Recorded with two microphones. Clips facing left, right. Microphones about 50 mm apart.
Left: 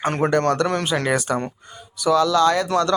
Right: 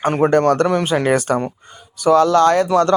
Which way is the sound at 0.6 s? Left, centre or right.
Right.